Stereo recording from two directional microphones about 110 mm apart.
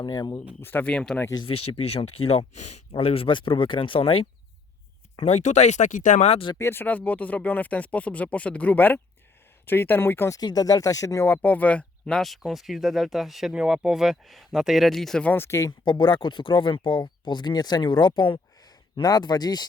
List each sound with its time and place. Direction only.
0.0 s speech: 35° left (ahead or behind)
0.6 s speech: 15° left (ahead or behind)
1.5 s speech: 60° left (ahead or behind)
5.1 s speech: 80° left
6.6 s speech: 20° left (ahead or behind)
10.3 s speech: 35° left (ahead or behind)
11.4 s speech: 15° left (ahead or behind)
15.3 s speech: 25° left (ahead or behind)
15.8 s speech: 45° left (ahead or behind)